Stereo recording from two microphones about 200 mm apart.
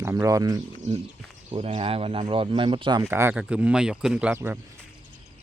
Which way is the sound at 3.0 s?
10° right (ahead or behind).